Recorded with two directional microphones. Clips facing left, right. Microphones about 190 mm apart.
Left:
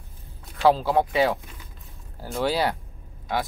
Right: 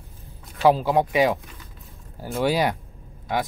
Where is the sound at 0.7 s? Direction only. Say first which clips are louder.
Right 1 dB; 15° right (ahead or behind).